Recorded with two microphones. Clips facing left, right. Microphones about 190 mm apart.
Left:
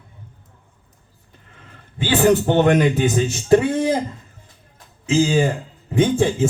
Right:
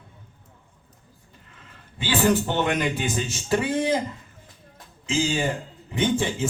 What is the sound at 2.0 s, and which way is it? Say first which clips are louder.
Speech: left 6 dB; 55° left (ahead or behind).